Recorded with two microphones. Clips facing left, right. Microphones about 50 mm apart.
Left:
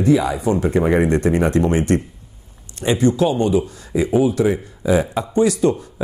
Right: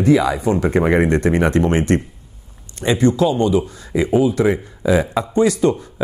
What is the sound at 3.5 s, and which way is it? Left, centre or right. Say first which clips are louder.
Speech: even; right.